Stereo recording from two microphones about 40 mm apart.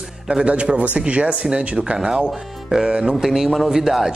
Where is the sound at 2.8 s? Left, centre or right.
Right.